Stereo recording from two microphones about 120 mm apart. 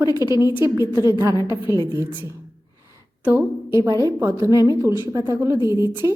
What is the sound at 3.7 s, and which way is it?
A woman's voice, 25° right (ahead or behind).